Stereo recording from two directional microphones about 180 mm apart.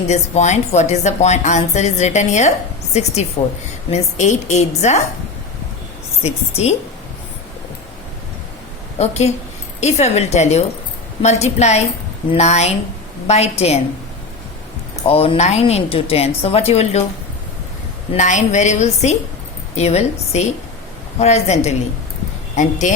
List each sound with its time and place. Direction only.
0.1 s a woman's voice: 40° left (ahead or behind)
6.2 s a woman's voice: 35° left (ahead or behind)
9.0 s a woman's voice: 35° left (ahead or behind)
15.0 s a woman's voice: 30° left (ahead or behind)
18.1 s a woman's voice: 40° left (ahead or behind)